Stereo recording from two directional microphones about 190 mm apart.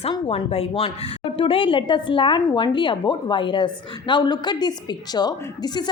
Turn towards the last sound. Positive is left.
turn(degrees=20)  # may be behind; listen again after turning